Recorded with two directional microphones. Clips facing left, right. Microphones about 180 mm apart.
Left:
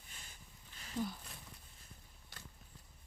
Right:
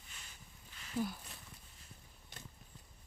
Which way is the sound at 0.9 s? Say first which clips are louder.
Right 2 dB; 5° right (ahead or behind).